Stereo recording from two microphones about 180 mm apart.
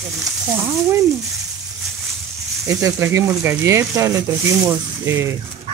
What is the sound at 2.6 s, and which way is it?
Speech, 15° right (ahead or behind).